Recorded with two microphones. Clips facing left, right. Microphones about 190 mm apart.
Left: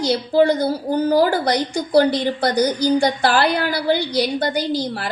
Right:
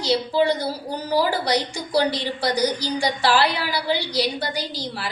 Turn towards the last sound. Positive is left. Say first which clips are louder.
# left 8 dB
turn(degrees=55)  # may be behind; listen again after turning